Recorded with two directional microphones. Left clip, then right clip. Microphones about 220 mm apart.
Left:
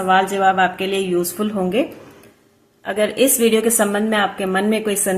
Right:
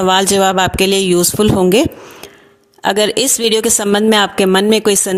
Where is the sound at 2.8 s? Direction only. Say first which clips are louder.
Right 4 dB; 45° right (ahead or behind).